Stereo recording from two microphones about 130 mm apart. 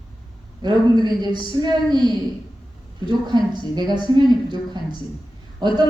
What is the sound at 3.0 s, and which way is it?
A woman's voice, 35° right (ahead or behind).